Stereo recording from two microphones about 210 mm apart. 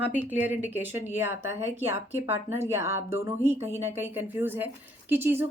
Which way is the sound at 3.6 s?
30° right (ahead or behind).